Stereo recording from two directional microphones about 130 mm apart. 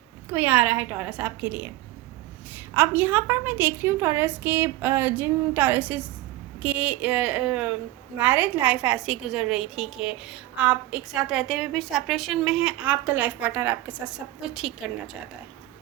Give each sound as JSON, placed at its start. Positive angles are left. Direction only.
{"t": 0.3, "sound": "a woman's voice", "side_deg": -15}
{"t": 2.7, "sound": "a woman's voice", "side_deg": -15}